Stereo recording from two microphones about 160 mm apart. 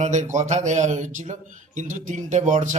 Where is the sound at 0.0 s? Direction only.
50° right (ahead or behind).